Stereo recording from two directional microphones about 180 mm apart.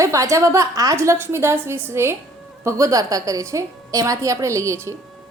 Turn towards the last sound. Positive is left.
turn(degrees=-15)  # may be behind; listen again after turning